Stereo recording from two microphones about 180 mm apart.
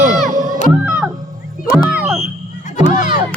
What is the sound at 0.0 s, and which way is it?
Music, 45° right (ahead or behind).